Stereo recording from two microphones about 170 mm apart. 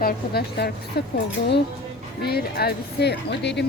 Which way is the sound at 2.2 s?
70° left (ahead or behind).